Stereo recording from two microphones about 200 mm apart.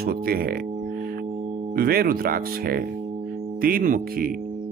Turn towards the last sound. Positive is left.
turn(degrees=-45)  # may be behind; listen again after turning